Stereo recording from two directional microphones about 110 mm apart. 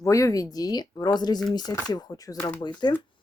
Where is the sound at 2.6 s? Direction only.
40° left (ahead or behind).